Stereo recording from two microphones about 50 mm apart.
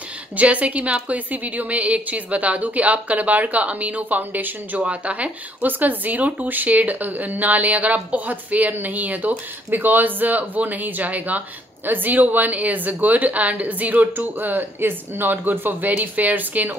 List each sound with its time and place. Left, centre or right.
0.4 s speech: right
4.7 s speech: right